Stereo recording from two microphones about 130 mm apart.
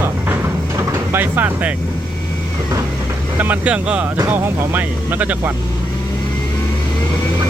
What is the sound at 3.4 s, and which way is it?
Speech, 10° right (ahead or behind).